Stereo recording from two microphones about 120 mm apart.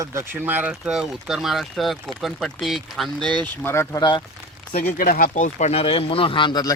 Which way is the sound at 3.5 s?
20° left (ahead or behind).